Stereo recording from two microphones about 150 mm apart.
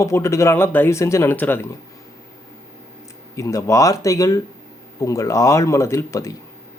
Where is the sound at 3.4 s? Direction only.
20° left (ahead or behind).